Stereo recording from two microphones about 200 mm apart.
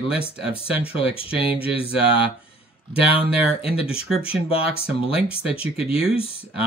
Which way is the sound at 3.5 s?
30° left (ahead or behind).